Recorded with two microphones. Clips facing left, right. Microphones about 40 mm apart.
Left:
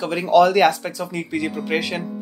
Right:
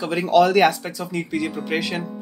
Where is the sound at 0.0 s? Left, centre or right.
Centre.